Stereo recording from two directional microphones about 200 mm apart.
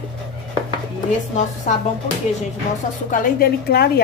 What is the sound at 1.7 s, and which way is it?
Speech, 40° left (ahead or behind).